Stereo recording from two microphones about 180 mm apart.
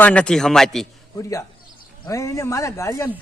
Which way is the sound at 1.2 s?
15° left (ahead or behind).